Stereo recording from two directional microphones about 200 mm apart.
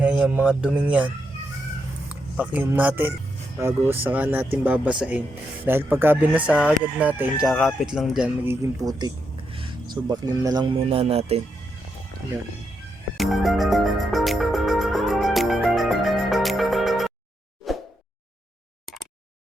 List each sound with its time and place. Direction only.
0.0 s speech: 5° right (ahead or behind)
2.3 s speech: 5° right (ahead or behind)
8.8 s speech: 20° right (ahead or behind)
13.1 s music: centre (ahead or behind)
17.7 s a sound: centre (ahead or behind)